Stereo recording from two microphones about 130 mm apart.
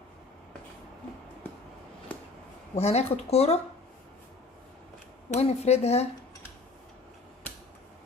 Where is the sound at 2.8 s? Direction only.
55° left (ahead or behind).